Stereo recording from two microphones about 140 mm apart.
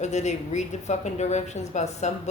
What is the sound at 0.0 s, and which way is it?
A woman's voice, 55° left (ahead or behind).